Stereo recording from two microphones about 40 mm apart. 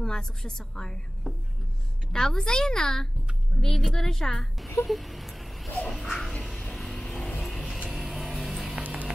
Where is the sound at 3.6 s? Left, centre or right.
Centre.